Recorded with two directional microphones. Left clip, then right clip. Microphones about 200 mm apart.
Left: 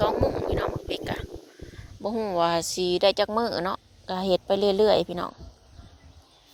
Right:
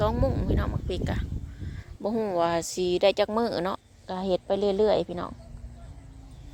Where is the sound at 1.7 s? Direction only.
20° right (ahead or behind).